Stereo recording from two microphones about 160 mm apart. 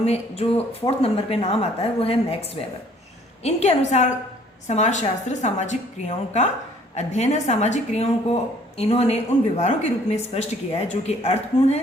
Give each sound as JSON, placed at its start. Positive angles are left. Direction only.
{"t": 0.0, "sound": "a woman's voice", "side_deg": 40}